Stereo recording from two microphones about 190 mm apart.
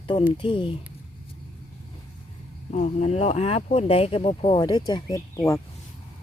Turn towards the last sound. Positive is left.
turn(degrees=15)  # may be behind; listen again after turning